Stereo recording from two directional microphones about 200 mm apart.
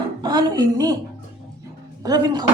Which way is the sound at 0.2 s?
20° right (ahead or behind).